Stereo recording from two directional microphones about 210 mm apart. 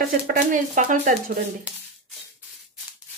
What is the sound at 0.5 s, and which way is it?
Speech, 40° right (ahead or behind).